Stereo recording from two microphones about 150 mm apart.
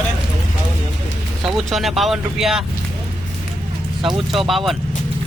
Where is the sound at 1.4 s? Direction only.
Centre (ahead or behind).